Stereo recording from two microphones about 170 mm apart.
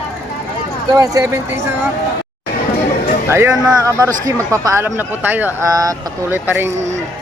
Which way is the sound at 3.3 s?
15° right (ahead or behind).